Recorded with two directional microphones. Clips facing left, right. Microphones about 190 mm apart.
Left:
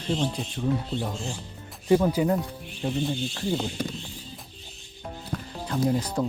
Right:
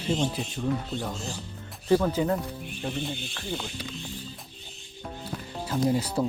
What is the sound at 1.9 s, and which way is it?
Speech, 15° left (ahead or behind).